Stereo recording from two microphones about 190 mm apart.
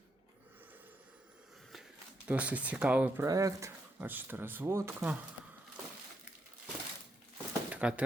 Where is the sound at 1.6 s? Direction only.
Centre (ahead or behind).